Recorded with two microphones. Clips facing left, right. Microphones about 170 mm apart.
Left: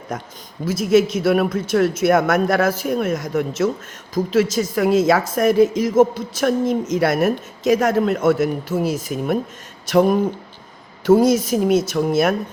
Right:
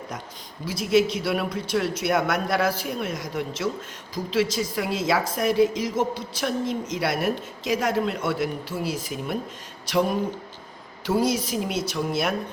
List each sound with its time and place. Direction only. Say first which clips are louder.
0.1 s a woman's voice: left 7 dB; 50° left (ahead or behind)